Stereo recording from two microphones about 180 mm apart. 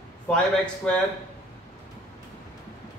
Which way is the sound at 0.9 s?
5° left (ahead or behind).